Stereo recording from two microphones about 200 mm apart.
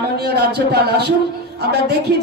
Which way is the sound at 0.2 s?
55° right (ahead or behind).